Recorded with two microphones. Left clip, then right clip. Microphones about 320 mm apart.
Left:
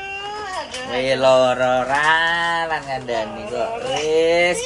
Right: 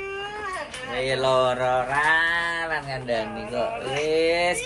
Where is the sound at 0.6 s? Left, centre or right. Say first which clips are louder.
Left 8 dB; centre.